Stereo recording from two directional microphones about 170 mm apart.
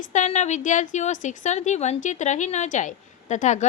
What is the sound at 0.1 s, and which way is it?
A woman's voice, 45° left (ahead or behind).